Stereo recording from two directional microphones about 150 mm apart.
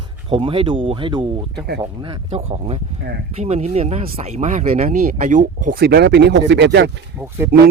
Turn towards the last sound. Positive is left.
turn(degrees=-15)  # may be behind; listen again after turning